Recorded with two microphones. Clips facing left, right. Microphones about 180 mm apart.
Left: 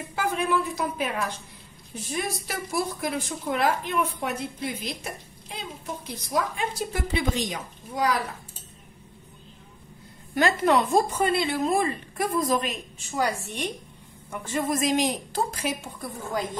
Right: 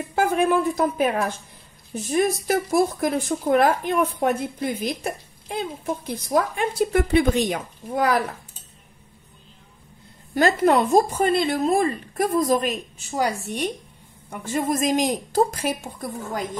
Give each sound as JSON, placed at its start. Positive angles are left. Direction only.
{"t": 0.1, "sound": "a woman's voice", "side_deg": -50}
{"t": 10.3, "sound": "speech", "side_deg": -45}